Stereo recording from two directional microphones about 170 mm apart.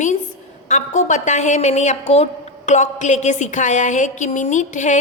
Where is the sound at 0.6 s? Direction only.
45° left (ahead or behind).